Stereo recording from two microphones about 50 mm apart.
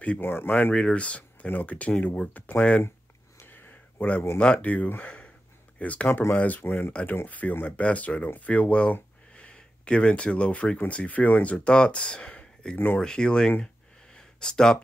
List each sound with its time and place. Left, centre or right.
0.2 s speech: left
0.5 s speech: left
3.4 s a sound: left
4.0 s speech: left
4.4 s speech: centre
4.6 s speech: left
6.6 s speech: left
7.2 s speech: left
9.3 s a sound: left
10.9 s speech: left
12.7 s speech: left
13.0 s speech: centre
14.1 s a sound: centre